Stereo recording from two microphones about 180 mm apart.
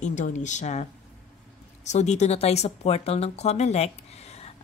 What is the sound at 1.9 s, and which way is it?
A woman's voice, 40° left (ahead or behind).